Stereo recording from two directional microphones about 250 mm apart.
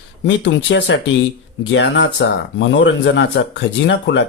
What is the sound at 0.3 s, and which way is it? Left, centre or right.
Speech, left.